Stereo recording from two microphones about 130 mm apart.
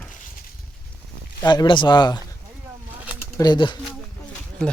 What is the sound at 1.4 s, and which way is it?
Speech, 35° left (ahead or behind).